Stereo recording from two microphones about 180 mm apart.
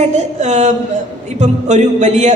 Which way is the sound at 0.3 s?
40° right (ahead or behind).